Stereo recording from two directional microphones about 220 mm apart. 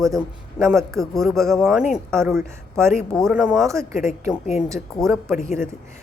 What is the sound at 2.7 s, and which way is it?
Speech, 10° right (ahead or behind).